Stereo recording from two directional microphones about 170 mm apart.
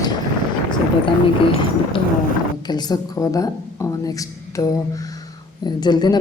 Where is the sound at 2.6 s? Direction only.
25° left (ahead or behind).